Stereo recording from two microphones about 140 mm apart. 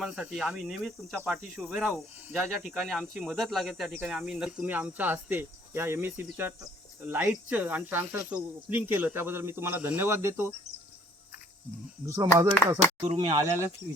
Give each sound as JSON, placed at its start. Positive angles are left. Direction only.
{"t": 0.0, "sound": "speech", "side_deg": -5}
{"t": 12.0, "sound": "speech", "side_deg": -25}